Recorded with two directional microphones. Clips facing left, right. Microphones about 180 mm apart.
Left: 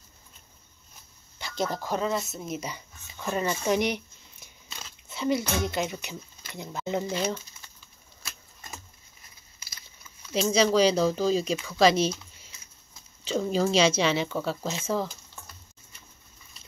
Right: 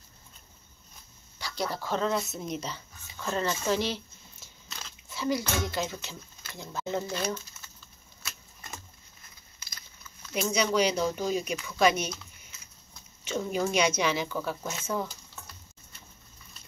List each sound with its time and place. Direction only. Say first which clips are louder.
1.4 s speech: left 3 dB; 20° left (ahead or behind)
2.0 s speech: even; centre (ahead or behind); by 7.2 s 15° left (ahead or behind)
10.3 s speech: left 4 dB; 30° left (ahead or behind)
13.2 s speech: left 4 dB; 30° left (ahead or behind)